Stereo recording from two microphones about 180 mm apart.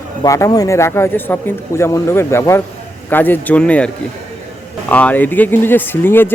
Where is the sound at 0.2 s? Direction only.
15° left (ahead or behind).